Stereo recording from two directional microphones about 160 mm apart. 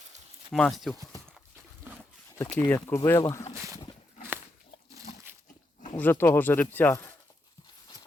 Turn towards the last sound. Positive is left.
turn(degrees=10)  # may be behind; listen again after turning